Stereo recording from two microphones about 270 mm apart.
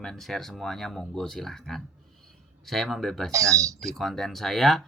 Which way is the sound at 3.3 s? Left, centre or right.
Centre.